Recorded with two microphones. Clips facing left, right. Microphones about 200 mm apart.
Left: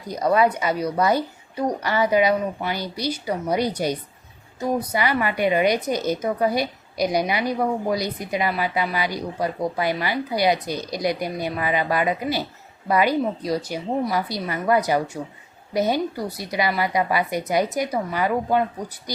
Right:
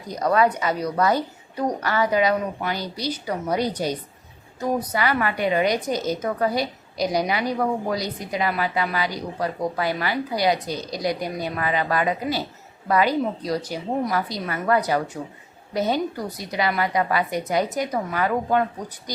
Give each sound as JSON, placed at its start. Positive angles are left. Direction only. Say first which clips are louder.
{"t": 0.1, "sound": "a woman's voice", "louder": "left 1 dB", "side_deg": 10}